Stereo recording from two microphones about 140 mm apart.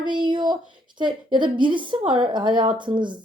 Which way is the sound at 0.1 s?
35° right (ahead or behind).